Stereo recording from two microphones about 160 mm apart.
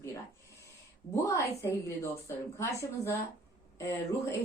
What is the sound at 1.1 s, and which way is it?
A woman's voice, 20° left (ahead or behind).